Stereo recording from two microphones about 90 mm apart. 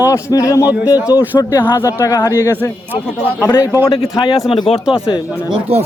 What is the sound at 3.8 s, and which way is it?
Speech, 65° left (ahead or behind).